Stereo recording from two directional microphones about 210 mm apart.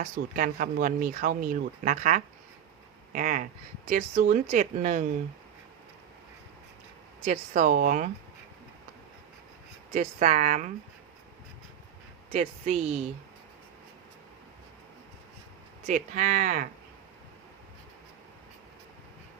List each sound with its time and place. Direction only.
0.0 s speech: 40° right (ahead or behind)
7.3 s speech: 35° right (ahead or behind)
9.9 s speech: 35° right (ahead or behind)
12.3 s speech: 30° right (ahead or behind)
15.9 s speech: 35° right (ahead or behind)